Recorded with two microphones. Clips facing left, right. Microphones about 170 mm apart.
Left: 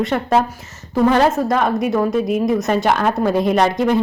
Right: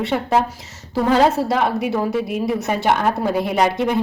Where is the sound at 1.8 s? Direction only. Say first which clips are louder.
Left 3 dB; 70° right (ahead or behind).